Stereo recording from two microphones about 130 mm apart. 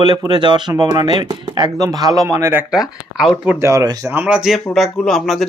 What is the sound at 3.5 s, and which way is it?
Speech, 25° right (ahead or behind).